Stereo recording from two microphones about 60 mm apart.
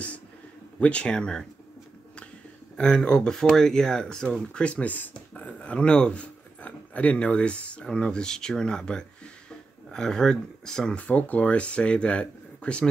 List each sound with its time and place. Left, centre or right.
0.7 s speech: left
2.8 s speech: centre
11.0 s speech: left